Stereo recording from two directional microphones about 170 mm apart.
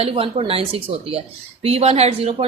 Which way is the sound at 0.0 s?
35° right (ahead or behind).